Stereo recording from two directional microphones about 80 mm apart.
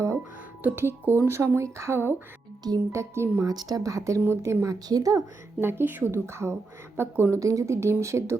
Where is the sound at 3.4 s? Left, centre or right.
Right.